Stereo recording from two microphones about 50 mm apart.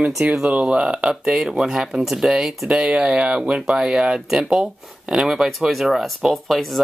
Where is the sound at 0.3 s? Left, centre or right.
Right.